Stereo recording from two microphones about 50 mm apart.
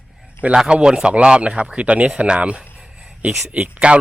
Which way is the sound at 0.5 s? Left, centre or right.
Centre.